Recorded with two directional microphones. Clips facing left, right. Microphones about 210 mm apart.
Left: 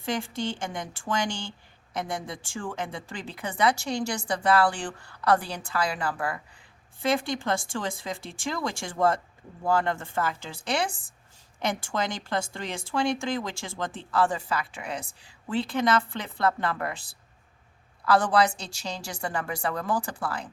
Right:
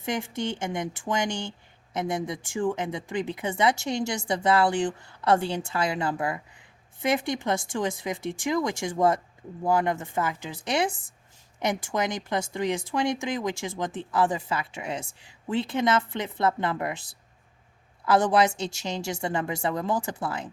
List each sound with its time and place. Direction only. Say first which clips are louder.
0.0 s speech: right 1 dB; 20° right (ahead or behind)